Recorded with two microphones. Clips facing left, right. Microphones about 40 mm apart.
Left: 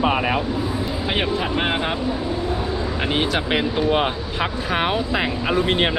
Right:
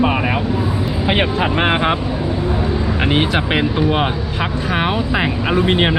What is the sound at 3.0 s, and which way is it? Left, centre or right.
Speech, right.